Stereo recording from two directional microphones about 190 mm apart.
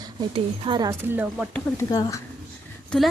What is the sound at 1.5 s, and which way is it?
Speech, 15° left (ahead or behind).